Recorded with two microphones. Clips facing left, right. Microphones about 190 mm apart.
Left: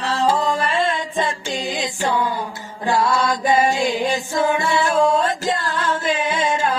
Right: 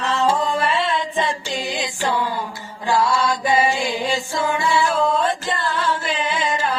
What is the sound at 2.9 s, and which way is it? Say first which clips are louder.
Music: even; 20° left (ahead or behind).